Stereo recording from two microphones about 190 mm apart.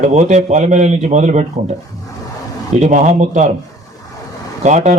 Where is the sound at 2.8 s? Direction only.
40° right (ahead or behind).